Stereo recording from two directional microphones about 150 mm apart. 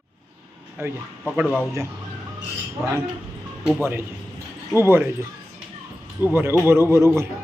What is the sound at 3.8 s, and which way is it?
Speech, 15° right (ahead or behind).